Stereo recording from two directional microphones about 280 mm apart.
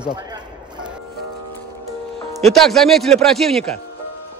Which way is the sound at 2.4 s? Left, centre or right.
Centre.